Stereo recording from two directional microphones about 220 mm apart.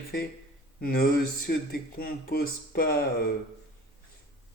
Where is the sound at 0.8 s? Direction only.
40° left (ahead or behind).